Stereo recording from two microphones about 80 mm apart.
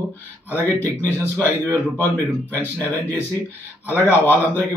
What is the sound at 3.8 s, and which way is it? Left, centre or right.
Speech, left.